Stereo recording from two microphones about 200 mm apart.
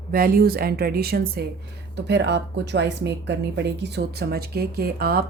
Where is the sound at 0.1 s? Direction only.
45° right (ahead or behind).